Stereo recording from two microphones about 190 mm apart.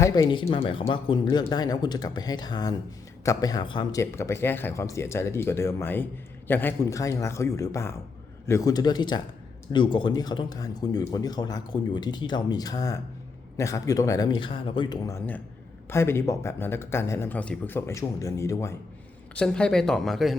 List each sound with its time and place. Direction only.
0.0 s speech: 20° left (ahead or behind)
4.0 s speech: 15° left (ahead or behind)